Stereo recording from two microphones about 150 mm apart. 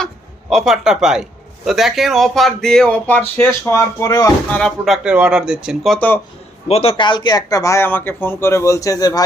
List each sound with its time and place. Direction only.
0.5 s a man's voice: centre (ahead or behind); by 4.3 s 25° left (ahead or behind)
4.5 s a man's voice: 5° left (ahead or behind)
5.0 s a man's voice: 5° right (ahead or behind)
6.7 s speech: 40° left (ahead or behind); by 9.2 s 25° left (ahead or behind)